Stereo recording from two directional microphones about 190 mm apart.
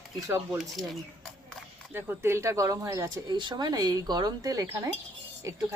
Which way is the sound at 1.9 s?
10° right (ahead or behind).